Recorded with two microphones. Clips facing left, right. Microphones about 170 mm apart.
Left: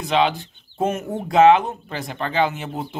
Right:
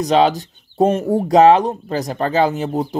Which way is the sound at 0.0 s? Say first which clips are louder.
Right 5 dB; 40° right (ahead or behind).